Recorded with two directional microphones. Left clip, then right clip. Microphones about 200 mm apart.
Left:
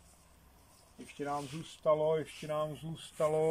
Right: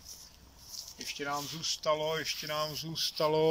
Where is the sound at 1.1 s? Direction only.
10° left (ahead or behind).